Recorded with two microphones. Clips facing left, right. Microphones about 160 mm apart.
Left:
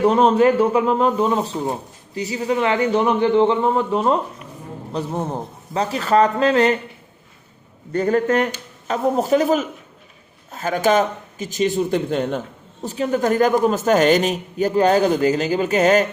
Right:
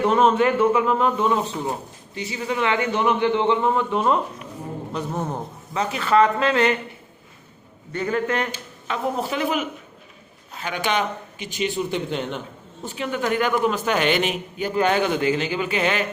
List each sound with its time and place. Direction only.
0.0 s a man's voice: 35° left (ahead or behind)
7.9 s a man's voice: 40° left (ahead or behind)